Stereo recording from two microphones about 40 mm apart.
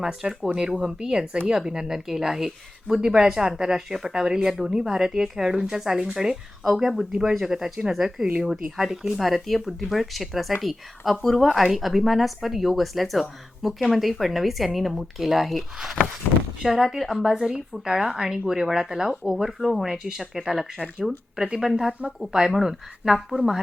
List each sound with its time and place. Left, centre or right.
0.0 s speech: centre
9.2 s a woman's voice: centre
17.3 s speech: right